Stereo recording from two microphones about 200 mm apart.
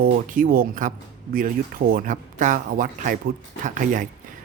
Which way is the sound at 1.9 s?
40° right (ahead or behind).